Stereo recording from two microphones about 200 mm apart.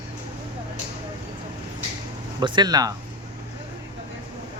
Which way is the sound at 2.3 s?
20° right (ahead or behind).